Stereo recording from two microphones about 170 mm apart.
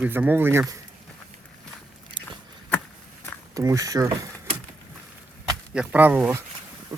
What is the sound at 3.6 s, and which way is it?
Speech, 20° right (ahead or behind).